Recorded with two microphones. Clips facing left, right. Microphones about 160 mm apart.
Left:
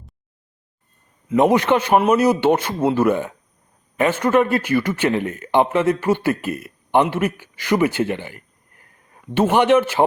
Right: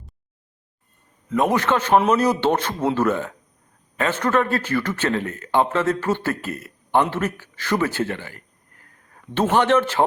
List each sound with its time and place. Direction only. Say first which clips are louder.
1.3 s speech: left 4 dB; 15° left (ahead or behind)